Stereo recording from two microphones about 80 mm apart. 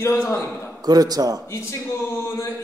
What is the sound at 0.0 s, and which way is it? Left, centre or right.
Speech, left.